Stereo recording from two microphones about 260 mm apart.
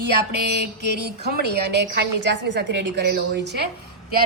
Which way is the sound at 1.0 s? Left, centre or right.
Right.